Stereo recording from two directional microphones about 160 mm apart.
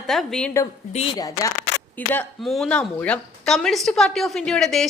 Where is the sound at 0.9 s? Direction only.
35° left (ahead or behind).